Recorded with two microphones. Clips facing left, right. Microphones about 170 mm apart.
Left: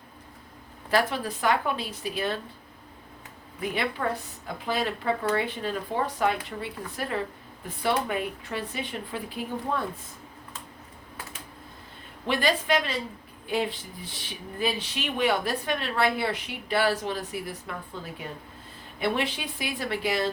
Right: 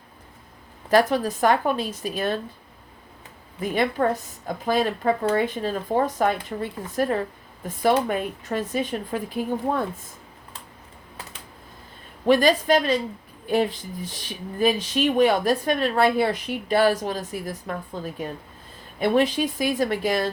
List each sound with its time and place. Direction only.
0.9 s a woman's voice: 40° right (ahead or behind)
3.6 s a woman's voice: 45° right (ahead or behind)
12.2 s a woman's voice: 40° right (ahead or behind)